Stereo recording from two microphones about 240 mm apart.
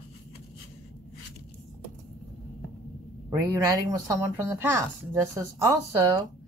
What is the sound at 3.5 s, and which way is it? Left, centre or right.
Speech, centre.